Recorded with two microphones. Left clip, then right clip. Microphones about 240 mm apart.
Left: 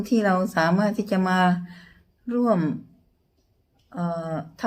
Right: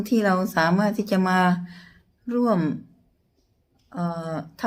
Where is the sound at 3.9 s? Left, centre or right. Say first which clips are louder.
Left 1 dB; centre.